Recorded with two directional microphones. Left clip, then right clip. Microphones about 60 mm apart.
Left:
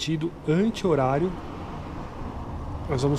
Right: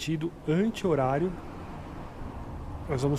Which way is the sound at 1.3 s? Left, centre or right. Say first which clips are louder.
Left 5 dB; centre.